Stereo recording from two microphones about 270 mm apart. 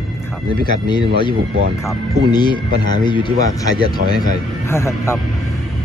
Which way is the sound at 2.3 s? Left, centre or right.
Centre.